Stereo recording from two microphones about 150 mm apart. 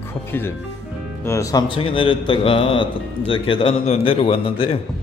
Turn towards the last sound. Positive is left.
turn(degrees=40)  # may be behind; listen again after turning